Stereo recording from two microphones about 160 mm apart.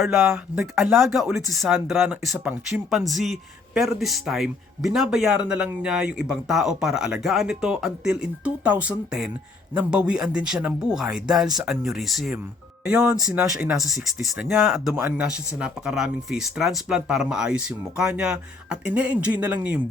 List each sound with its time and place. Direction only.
0.0 s speech: centre (ahead or behind)
13.0 s speech: 20° right (ahead or behind)
13.2 s speech: 5° right (ahead or behind)